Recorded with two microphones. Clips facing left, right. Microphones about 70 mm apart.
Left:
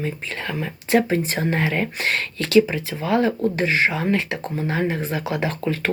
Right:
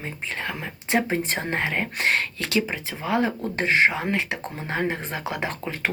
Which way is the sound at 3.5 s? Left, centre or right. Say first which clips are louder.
Even; right.